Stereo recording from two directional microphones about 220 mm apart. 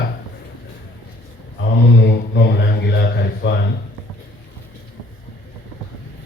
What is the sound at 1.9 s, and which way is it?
Speech, 50° left (ahead or behind).